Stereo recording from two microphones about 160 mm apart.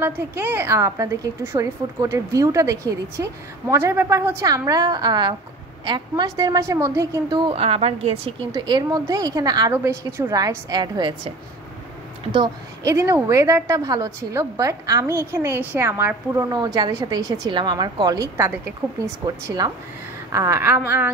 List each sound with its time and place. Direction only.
0.0 s a woman's voice: 15° right (ahead or behind); by 11.3 s 30° right (ahead or behind)
12.8 s a woman's voice: 20° right (ahead or behind)
18.8 s a woman's voice: 10° right (ahead or behind)
19.2 s a woman's voice: 25° right (ahead or behind)